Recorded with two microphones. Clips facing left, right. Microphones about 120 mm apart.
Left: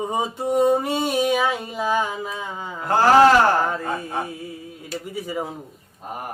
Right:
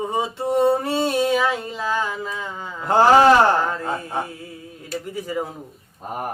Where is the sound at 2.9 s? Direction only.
20° right (ahead or behind).